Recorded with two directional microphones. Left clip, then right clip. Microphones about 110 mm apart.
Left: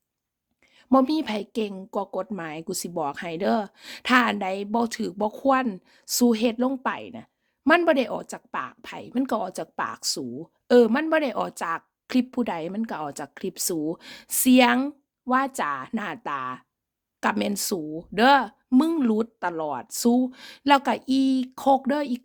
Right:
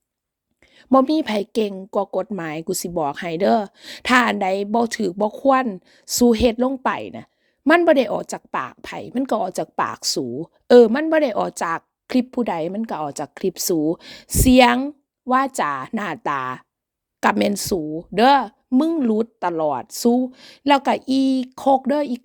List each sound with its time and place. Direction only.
0.7 s a woman's voice: 50° right (ahead or behind)
1.7 s a woman's voice: 35° right (ahead or behind)
2.0 s speech: 45° right (ahead or behind)
2.4 s a woman's voice: 65° right (ahead or behind)
2.6 s speech: 35° right (ahead or behind)
6.8 s a woman's voice: 60° right (ahead or behind)
7.9 s speech: 50° right (ahead or behind)
12.0 s a woman's voice: 35° right (ahead or behind); by 16.6 s 90° right
17.2 s speech: 70° right (ahead or behind)
17.5 s a woman's voice: 35° right (ahead or behind)
18.7 s speech: 20° right (ahead or behind)
19.4 s speech: 45° right (ahead or behind)
19.9 s speech: 25° right (ahead or behind)
20.7 s a woman's voice: 30° right (ahead or behind)